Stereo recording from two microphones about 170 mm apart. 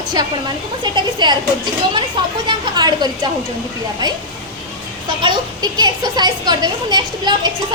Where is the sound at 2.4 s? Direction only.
25° right (ahead or behind).